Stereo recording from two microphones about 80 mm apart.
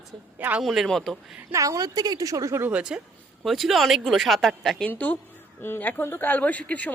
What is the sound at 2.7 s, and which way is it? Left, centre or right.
Speech, centre.